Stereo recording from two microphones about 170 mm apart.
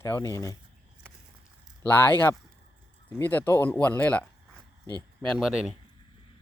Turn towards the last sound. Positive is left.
turn(degrees=0)  # may be behind; listen again after turning